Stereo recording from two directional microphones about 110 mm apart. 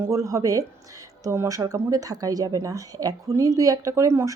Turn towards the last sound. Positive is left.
turn(degrees=-30)  # may be behind; listen again after turning